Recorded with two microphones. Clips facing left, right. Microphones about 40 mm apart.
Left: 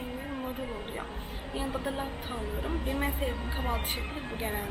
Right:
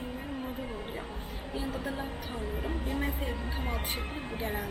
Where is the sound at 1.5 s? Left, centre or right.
Left.